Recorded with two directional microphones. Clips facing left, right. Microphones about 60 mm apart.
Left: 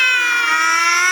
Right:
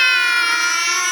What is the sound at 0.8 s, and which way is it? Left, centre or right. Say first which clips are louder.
Siren: left 6 dB; left.